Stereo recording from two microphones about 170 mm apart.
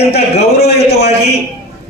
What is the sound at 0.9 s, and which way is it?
Speech, 75° left (ahead or behind).